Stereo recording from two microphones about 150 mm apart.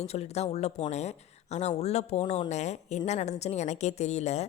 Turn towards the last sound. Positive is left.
turn(degrees=50)  # may be behind; listen again after turning